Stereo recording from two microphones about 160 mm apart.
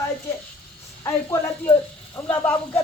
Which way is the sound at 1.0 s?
15° left (ahead or behind).